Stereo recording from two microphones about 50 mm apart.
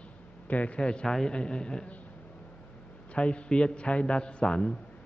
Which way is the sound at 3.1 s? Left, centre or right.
Left.